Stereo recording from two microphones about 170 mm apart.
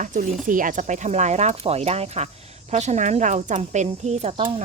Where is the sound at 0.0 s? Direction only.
45° right (ahead or behind).